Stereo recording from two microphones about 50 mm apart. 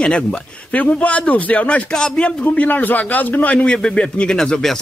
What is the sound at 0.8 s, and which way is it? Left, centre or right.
Speech, left.